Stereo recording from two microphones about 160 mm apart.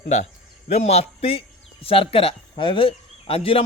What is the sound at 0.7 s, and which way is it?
A man's voice, 40° left (ahead or behind).